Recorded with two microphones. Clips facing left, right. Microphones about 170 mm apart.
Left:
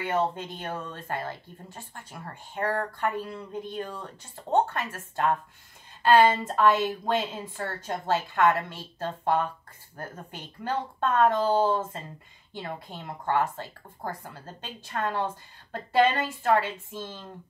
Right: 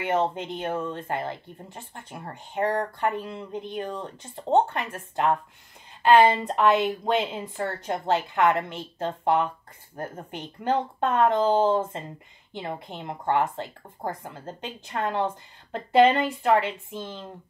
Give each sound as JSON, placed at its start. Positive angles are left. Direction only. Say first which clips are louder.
{"t": 0.3, "sound": "speech", "louder": "right 5 dB", "side_deg": -20}
{"t": 10.6, "sound": "speech", "louder": "right 4 dB", "side_deg": -20}